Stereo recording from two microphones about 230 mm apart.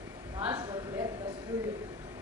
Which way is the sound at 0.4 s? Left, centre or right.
Centre.